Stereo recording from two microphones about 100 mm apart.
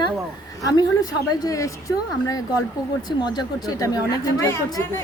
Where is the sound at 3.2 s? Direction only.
45° left (ahead or behind); by 4.9 s 30° left (ahead or behind).